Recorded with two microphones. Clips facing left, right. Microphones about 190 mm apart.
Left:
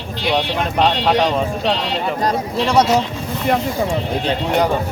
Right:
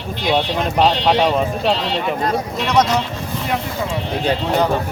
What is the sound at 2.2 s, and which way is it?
Speech, 30° left (ahead or behind).